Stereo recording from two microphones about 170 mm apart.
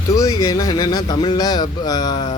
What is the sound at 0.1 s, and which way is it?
A man's voice, 20° left (ahead or behind).